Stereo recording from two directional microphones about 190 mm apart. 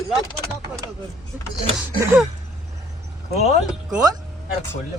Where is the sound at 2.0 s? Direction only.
15° right (ahead or behind).